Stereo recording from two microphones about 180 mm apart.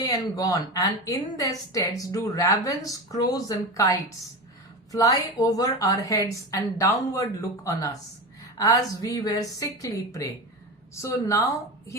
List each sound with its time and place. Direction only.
0.0 s a woman's voice: 20° left (ahead or behind)